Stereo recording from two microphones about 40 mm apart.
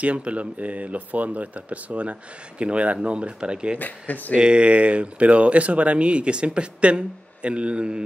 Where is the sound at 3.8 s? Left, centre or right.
Left.